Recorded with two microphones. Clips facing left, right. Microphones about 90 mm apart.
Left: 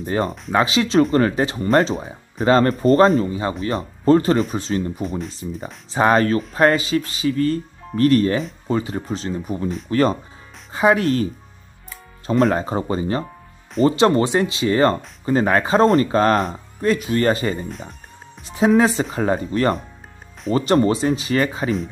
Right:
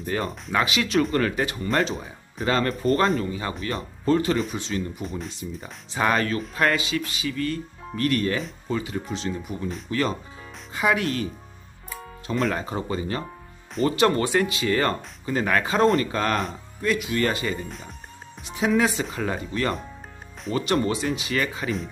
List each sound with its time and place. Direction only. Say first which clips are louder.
0.0 s speech: left 6 dB; 30° left (ahead or behind)
12.3 s speech: left 8 dB; 40° left (ahead or behind)
17.6 s speech: left 5 dB; centre (ahead or behind)
18.5 s speech: left 6 dB; 35° left (ahead or behind)